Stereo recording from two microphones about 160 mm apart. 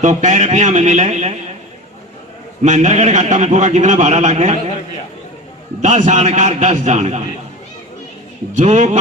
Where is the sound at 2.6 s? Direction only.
45° right (ahead or behind).